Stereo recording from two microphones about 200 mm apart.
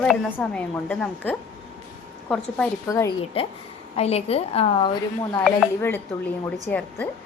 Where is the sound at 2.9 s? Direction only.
15° left (ahead or behind).